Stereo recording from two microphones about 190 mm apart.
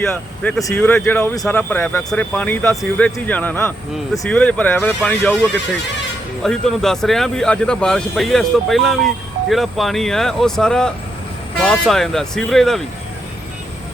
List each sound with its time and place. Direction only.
0.0 s speech: 5° left (ahead or behind)
6.4 s speech: centre (ahead or behind)